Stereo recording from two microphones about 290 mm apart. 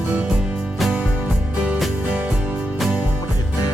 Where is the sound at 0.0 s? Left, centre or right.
Centre.